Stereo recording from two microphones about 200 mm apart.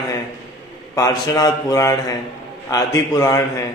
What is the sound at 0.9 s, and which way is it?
A man's voice, 15° left (ahead or behind).